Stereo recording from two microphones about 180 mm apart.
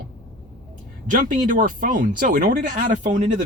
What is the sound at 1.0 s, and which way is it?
Speech, 45° right (ahead or behind).